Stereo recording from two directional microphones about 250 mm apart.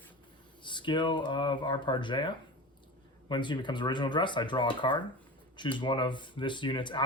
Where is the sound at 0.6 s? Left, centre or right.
Centre.